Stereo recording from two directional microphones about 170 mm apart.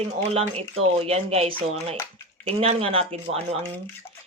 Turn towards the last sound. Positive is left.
turn(degrees=-35)  # may be behind; listen again after turning